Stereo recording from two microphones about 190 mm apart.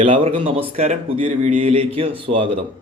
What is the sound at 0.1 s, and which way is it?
A man's voice, 30° right (ahead or behind).